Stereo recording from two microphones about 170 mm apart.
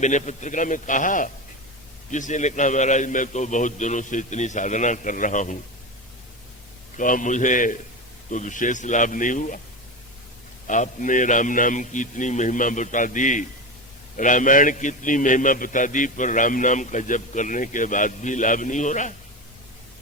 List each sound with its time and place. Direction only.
0.0 s a man's voice: 45° left (ahead or behind)
6.9 s a man's voice: 50° left (ahead or behind)
10.7 s a man's voice: 50° left (ahead or behind)